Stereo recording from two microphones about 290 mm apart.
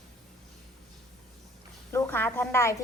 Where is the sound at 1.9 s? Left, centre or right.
Centre.